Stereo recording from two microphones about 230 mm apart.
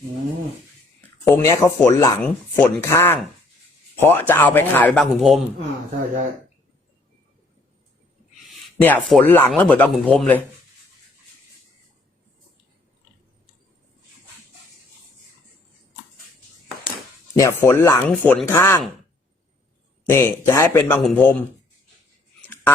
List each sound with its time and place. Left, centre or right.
1.2 s speech: centre
8.4 s speech: centre
17.3 s speech: centre
20.1 s speech: centre
22.4 s a sound: centre